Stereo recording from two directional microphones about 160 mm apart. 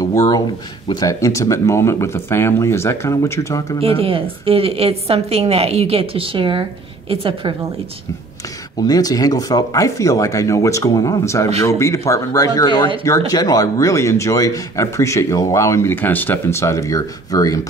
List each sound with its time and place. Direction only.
0.0 s a sound: 20° left (ahead or behind)
0.8 s speech: 25° left (ahead or behind)
3.8 s a woman's voice: 35° right (ahead or behind)
8.8 s speech: 25° left (ahead or behind)